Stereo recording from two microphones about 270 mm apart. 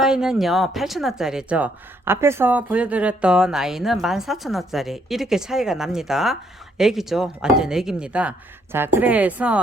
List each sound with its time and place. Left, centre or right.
0.0 s speech: centre